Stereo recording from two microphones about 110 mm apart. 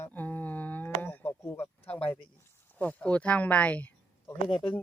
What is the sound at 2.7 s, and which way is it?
Speech, 15° left (ahead or behind).